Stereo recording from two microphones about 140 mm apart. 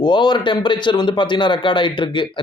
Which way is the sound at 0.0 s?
35° left (ahead or behind).